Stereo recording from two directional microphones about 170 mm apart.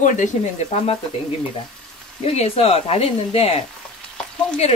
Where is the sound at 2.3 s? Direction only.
35° left (ahead or behind).